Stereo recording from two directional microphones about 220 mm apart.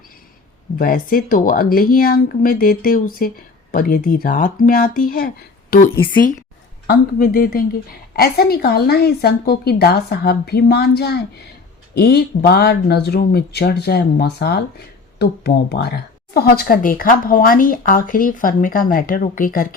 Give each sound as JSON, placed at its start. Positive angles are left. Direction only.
{"t": 0.8, "sound": "a woman's voice", "side_deg": 40}